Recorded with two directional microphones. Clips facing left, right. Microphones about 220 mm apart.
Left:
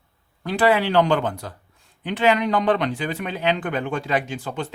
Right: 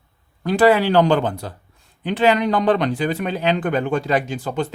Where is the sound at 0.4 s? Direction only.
40° right (ahead or behind).